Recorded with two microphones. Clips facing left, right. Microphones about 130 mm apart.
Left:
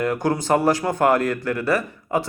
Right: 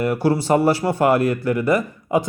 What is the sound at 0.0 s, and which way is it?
A man's voice, 10° right (ahead or behind).